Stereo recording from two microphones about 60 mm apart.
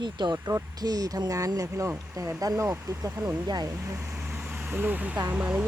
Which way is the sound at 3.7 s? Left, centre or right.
Right.